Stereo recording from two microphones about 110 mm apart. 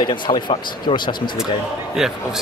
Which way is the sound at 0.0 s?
50° left (ahead or behind).